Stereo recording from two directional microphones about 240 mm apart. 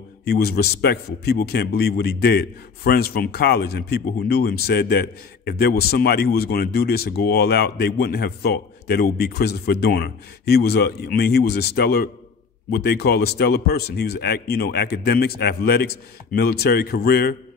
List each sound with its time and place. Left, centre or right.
0.2 s a man's voice: left